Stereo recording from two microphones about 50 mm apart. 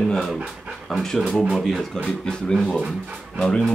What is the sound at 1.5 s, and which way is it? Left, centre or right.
Speech, centre.